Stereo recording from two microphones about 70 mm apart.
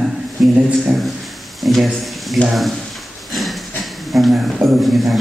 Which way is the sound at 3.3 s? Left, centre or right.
Centre.